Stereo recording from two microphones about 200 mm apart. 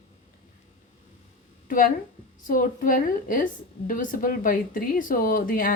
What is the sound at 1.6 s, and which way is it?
A woman's voice, 45° left (ahead or behind).